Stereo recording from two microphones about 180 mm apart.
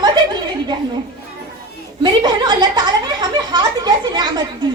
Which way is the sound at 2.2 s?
25° right (ahead or behind).